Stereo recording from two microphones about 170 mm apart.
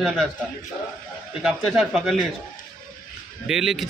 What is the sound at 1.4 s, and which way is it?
Speech, centre (ahead or behind).